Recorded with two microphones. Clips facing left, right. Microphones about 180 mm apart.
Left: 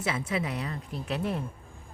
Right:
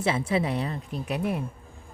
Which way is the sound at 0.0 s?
30° right (ahead or behind).